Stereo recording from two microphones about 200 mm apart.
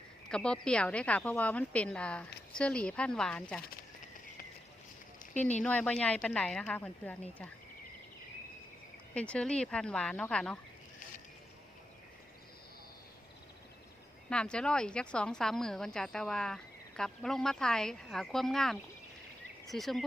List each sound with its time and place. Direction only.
0.3 s a woman's voice: 5° left (ahead or behind)
5.2 s a sound: 45° left (ahead or behind)
5.6 s a woman's voice: 5° left (ahead or behind)
9.1 s a woman's voice: 5° left (ahead or behind)
14.3 s a woman's voice: 5° left (ahead or behind)